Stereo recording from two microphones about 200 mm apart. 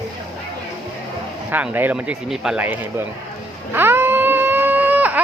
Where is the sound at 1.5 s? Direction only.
10° right (ahead or behind).